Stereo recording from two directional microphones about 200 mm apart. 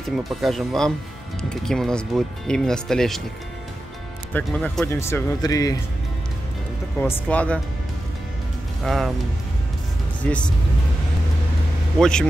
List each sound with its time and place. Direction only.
0.0 s speech: centre (ahead or behind)
4.3 s speech: 5° left (ahead or behind)
7.0 s speech: 10° left (ahead or behind)
8.8 s speech: centre (ahead or behind)
12.0 s speech: 5° left (ahead or behind)